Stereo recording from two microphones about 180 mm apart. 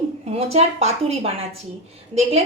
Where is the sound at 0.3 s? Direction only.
35° right (ahead or behind).